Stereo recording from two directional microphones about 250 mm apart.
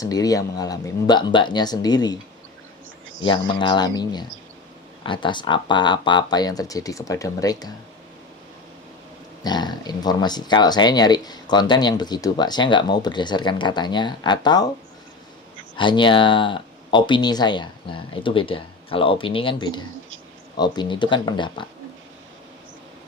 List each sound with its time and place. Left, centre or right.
0.0 s speech: centre
3.2 s speech: centre
9.4 s speech: centre
15.7 s speech: centre